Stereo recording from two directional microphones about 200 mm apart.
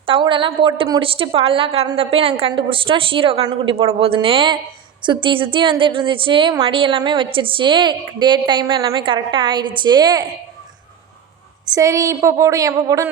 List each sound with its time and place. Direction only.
0.0 s a woman's voice: 25° right (ahead or behind)
11.7 s speech: 15° right (ahead or behind)